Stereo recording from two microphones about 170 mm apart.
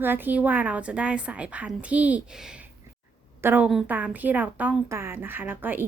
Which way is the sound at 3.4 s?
10° right (ahead or behind).